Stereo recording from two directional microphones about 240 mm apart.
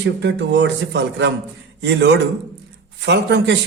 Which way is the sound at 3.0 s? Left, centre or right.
Right.